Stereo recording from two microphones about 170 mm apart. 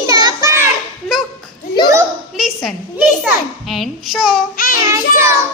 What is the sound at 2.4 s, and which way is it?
A child's voice, centre (ahead or behind).